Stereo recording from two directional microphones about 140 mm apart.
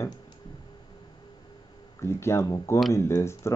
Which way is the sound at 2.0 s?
20° left (ahead or behind).